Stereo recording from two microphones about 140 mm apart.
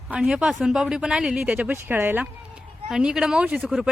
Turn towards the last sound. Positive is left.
turn(degrees=-5)  # may be behind; listen again after turning